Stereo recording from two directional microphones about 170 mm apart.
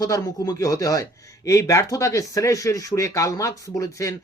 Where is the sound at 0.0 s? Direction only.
20° left (ahead or behind).